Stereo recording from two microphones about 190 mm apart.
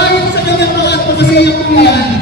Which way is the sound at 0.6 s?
60° left (ahead or behind).